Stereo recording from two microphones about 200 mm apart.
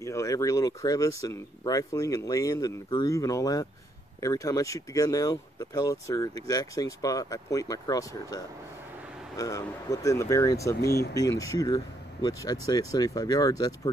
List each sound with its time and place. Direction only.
0.0 s speech: 15° left (ahead or behind)
9.4 s speech: 15° left (ahead or behind)